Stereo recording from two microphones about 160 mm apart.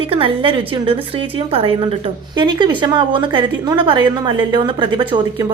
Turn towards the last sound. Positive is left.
turn(degrees=-30)  # may be behind; listen again after turning